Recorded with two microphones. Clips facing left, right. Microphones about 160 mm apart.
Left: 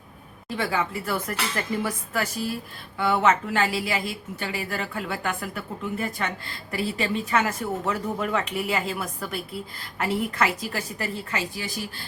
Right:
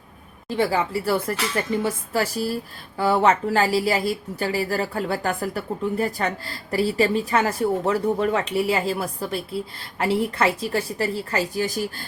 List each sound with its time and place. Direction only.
0.4 s speech: 30° right (ahead or behind)